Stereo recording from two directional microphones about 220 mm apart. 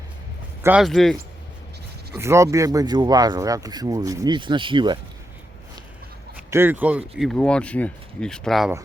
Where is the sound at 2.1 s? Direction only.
10° right (ahead or behind).